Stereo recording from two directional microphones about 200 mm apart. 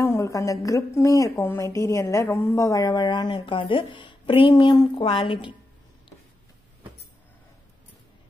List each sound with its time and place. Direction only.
0.0 s a woman's voice: 15° left (ahead or behind)